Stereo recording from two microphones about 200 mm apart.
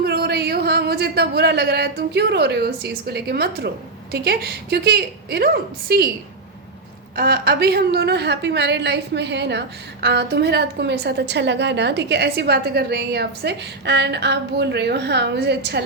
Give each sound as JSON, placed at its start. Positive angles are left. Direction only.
{"t": 0.0, "sound": "a woman's voice", "side_deg": -55}
{"t": 7.2, "sound": "a woman's voice", "side_deg": -50}